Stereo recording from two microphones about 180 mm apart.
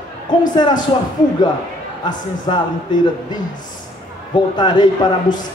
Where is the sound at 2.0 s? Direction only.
25° left (ahead or behind).